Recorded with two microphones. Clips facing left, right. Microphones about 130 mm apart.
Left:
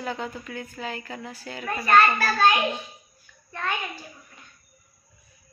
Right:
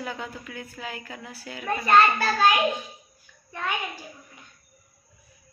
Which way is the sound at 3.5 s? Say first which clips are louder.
Left 1 dB; 15° right (ahead or behind).